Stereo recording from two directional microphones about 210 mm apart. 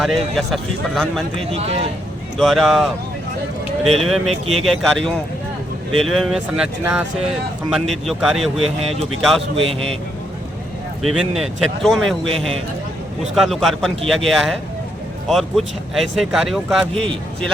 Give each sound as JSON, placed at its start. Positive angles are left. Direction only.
{"t": 0.0, "sound": "speech", "side_deg": 0}
{"t": 1.5, "sound": "speech", "side_deg": -30}
{"t": 2.4, "sound": "speech", "side_deg": 0}
{"t": 4.0, "sound": "speech", "side_deg": 0}
{"t": 8.5, "sound": "speech", "side_deg": -30}
{"t": 11.0, "sound": "speech", "side_deg": 0}
{"t": 13.3, "sound": "speech", "side_deg": 0}